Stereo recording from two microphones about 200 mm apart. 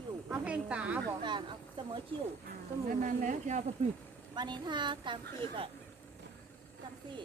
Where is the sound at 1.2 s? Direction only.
25° right (ahead or behind).